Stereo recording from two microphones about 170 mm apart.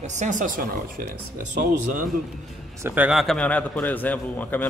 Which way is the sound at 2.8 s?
10° right (ahead or behind).